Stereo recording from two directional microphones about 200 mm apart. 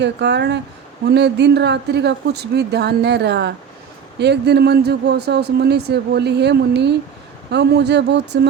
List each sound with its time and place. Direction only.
0.0 s speech: 60° right (ahead or behind)